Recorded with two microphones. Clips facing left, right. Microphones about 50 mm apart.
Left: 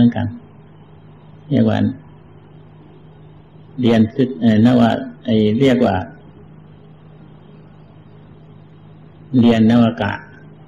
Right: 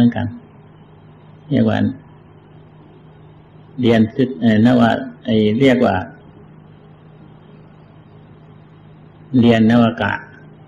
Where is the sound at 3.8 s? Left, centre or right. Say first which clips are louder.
Even; centre.